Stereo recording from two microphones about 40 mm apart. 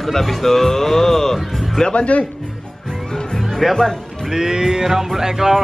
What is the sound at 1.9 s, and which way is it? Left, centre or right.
Speech, left.